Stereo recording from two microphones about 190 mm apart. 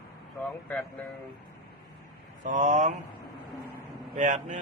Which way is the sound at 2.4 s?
40° right (ahead or behind).